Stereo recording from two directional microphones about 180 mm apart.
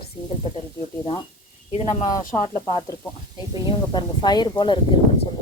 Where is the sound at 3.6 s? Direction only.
25° left (ahead or behind).